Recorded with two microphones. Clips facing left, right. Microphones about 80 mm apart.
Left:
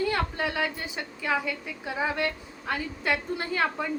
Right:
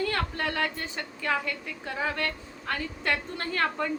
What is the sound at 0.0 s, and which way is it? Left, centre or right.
A woman's voice, centre.